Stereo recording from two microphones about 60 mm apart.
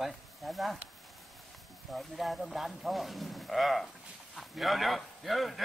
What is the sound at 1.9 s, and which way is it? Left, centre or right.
Speech, centre.